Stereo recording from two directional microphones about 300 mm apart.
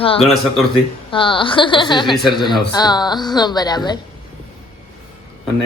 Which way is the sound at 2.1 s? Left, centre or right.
Centre.